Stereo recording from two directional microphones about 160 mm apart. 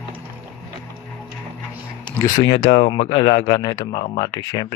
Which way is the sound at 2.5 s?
30° left (ahead or behind).